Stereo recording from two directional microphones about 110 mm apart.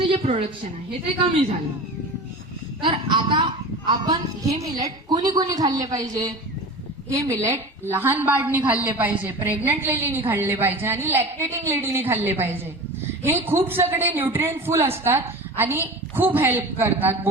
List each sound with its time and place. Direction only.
0.2 s a woman's voice: 65° right (ahead or behind)
2.8 s a woman's voice: 45° right (ahead or behind); by 17.2 s 20° right (ahead or behind)